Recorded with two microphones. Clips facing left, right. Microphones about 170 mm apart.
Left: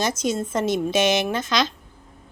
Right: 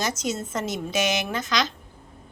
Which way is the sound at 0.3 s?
25° left (ahead or behind).